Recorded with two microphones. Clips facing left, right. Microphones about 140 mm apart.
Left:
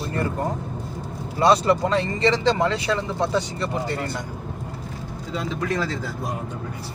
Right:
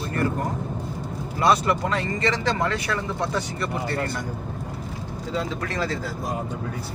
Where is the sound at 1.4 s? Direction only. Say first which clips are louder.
Left 3 dB; 30° left (ahead or behind).